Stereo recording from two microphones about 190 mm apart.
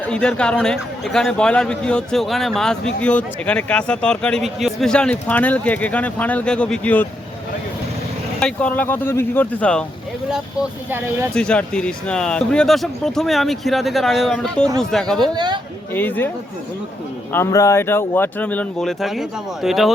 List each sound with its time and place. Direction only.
0.0 s a man's voice: 5° left (ahead or behind)
8.4 s speech: 5° left (ahead or behind)
10.2 s a man's voice: 5° right (ahead or behind)
11.3 s a man's voice: 5° left (ahead or behind)
15.4 s a sound: 20° right (ahead or behind)
16.0 s speech: 10° left (ahead or behind)
17.3 s a man's voice: 15° left (ahead or behind); by 19.9 s centre (ahead or behind)